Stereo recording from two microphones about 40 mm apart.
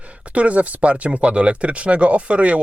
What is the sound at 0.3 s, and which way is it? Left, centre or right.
Speech, right.